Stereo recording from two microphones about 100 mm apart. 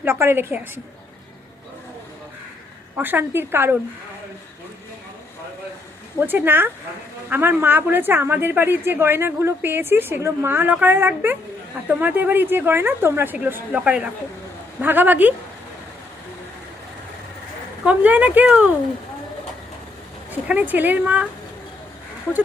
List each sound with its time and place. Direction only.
0.0 s a woman's voice: 25° right (ahead or behind)
2.9 s a woman's voice: 20° right (ahead or behind)
6.1 s a woman's voice: 20° right (ahead or behind)
17.8 s speech: 15° right (ahead or behind)
20.3 s speech: 15° right (ahead or behind)